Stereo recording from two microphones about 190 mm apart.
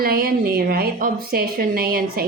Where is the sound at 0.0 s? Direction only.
55° right (ahead or behind).